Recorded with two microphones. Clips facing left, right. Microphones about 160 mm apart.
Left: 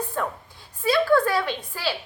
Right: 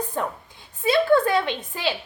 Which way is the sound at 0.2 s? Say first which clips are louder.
Right 1 dB; 20° right (ahead or behind).